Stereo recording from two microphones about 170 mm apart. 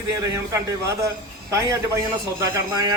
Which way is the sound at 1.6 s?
20° right (ahead or behind).